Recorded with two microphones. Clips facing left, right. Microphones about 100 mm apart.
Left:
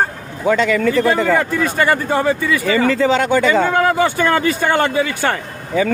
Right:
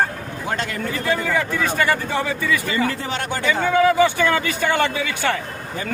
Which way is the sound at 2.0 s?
40° left (ahead or behind).